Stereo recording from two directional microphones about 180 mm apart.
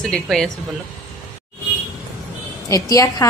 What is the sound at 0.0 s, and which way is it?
Speech, 5° left (ahead or behind).